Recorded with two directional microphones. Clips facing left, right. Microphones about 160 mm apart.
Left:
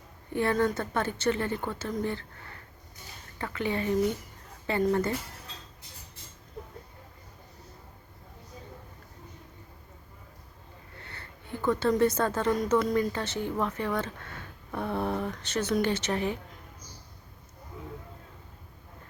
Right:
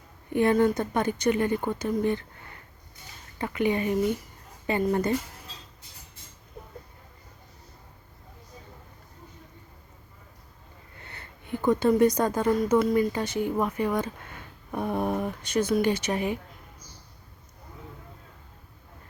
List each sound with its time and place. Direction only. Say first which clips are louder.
0.3 s a woman's voice: right 5 dB; 15° right (ahead or behind)
3.3 s a woman's voice: right 5 dB; 15° right (ahead or behind)
11.1 s a woman's voice: right 6 dB; 15° right (ahead or behind)